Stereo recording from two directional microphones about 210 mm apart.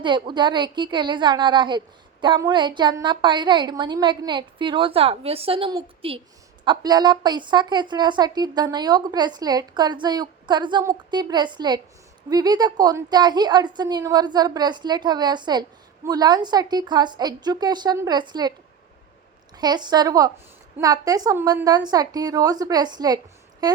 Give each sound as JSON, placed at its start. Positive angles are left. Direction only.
{"t": 0.0, "sound": "a woman's voice", "side_deg": -20}
{"t": 19.5, "sound": "a woman's voice", "side_deg": -20}